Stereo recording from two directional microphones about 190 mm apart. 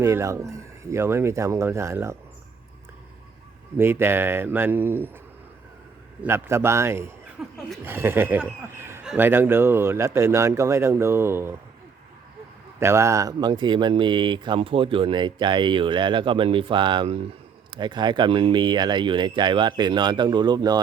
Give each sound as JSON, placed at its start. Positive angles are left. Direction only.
{"t": 0.0, "sound": "speech", "side_deg": -15}
{"t": 3.8, "sound": "speech", "side_deg": -10}
{"t": 6.2, "sound": "speech", "side_deg": -15}
{"t": 12.8, "sound": "speech", "side_deg": -15}